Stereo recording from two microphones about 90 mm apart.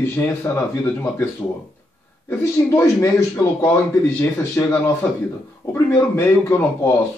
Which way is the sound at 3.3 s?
30° left (ahead or behind).